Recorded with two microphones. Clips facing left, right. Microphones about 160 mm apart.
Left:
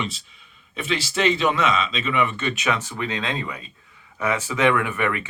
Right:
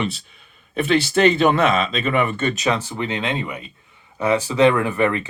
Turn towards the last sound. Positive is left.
turn(degrees=-30)  # may be behind; listen again after turning